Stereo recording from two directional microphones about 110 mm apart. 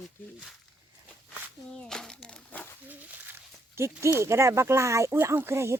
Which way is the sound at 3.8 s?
25° right (ahead or behind).